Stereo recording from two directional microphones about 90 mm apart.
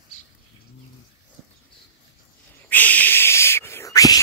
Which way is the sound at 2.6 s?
20° left (ahead or behind).